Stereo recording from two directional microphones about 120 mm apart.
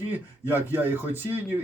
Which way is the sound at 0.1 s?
15° right (ahead or behind).